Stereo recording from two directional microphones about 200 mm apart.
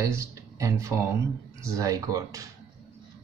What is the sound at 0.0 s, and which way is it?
Speech, 15° right (ahead or behind).